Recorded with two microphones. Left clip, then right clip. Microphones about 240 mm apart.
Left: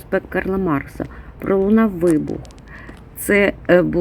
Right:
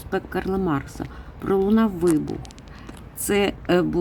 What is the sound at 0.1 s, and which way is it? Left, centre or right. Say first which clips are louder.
Speech: left 5 dB; centre.